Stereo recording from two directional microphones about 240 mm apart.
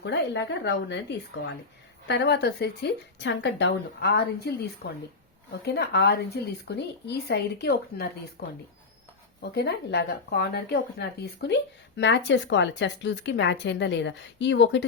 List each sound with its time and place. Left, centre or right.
0.0 s speech: left